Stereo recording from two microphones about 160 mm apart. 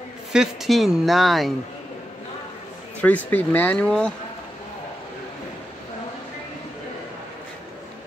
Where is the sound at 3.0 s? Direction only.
10° left (ahead or behind).